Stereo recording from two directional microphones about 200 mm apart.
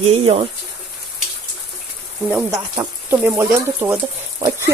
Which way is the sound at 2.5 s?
15° right (ahead or behind).